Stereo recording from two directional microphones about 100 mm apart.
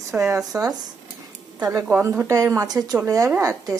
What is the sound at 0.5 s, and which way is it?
Speech, 30° right (ahead or behind).